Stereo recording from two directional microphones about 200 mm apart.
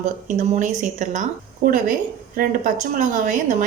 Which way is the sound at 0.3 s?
40° right (ahead or behind).